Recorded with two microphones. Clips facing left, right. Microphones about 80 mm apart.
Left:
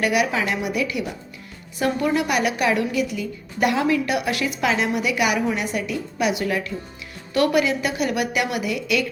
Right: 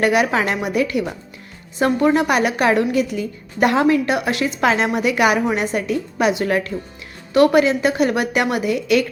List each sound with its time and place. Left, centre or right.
0.0 s a woman's voice: right
4.6 s a woman's voice: right
7.3 s a woman's voice: right